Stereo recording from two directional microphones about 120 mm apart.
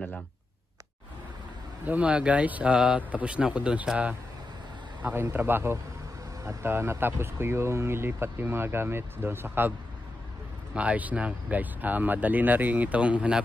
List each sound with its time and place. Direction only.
1.9 s speech: 10° right (ahead or behind)
5.1 s speech: 20° right (ahead or behind)